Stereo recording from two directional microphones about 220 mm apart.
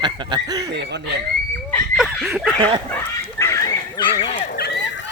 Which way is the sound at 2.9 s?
15° left (ahead or behind).